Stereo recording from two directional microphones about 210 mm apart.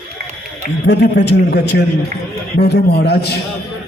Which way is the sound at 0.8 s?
55° left (ahead or behind).